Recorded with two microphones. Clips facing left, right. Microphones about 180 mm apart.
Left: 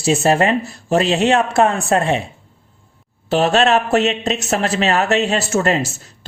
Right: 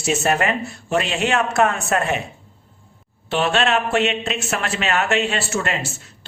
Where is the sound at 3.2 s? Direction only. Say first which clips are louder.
Left 5 dB; 40° left (ahead or behind).